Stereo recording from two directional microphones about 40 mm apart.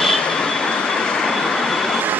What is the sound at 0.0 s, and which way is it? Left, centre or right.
Vehicle, centre.